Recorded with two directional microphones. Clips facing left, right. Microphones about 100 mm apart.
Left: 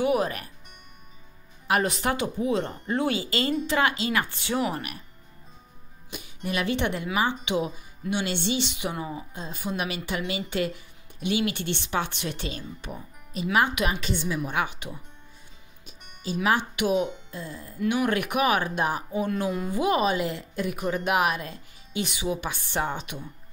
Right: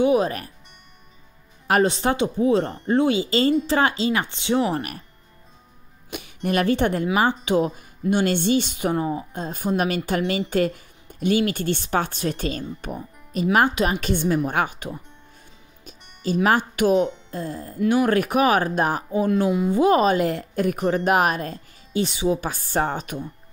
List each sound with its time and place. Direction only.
0.0 s speech: 25° right (ahead or behind)
1.7 s speech: 30° right (ahead or behind)
6.1 s speech: 55° right (ahead or behind)
16.4 s speech: 45° right (ahead or behind)
17.7 s speech: 35° right (ahead or behind)
22.0 s speech: 30° right (ahead or behind)